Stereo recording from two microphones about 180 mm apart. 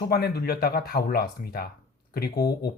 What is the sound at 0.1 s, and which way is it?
Speech, 60° left (ahead or behind).